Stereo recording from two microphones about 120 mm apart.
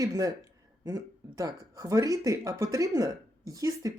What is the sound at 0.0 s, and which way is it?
Speech, 30° right (ahead or behind).